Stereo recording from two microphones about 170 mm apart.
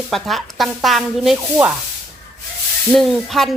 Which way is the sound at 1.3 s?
10° right (ahead or behind).